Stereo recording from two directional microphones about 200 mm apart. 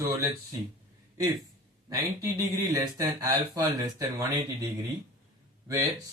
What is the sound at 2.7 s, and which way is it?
Speech, 15° right (ahead or behind).